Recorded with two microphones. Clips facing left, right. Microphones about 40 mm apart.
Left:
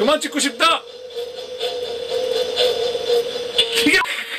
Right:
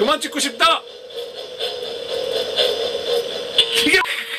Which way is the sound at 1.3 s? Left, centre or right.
Right.